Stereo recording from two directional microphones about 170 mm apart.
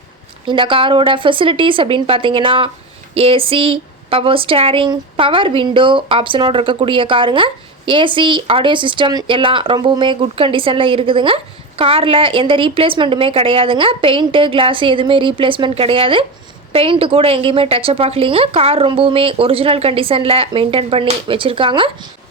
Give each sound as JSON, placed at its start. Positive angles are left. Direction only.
{"t": 0.4, "sound": "speech", "side_deg": -30}